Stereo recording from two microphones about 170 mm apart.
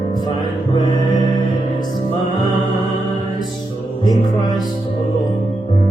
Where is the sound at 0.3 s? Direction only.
25° left (ahead or behind).